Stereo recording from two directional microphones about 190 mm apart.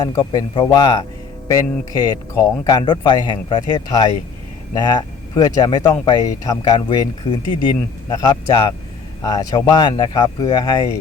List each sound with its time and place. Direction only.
0.3 s a man's voice: 30° left (ahead or behind)